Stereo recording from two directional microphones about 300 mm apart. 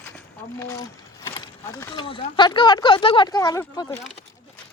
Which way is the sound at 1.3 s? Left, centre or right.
Centre.